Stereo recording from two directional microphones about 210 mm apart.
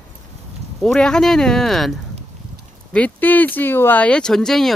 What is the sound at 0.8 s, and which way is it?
Speech, 5° left (ahead or behind).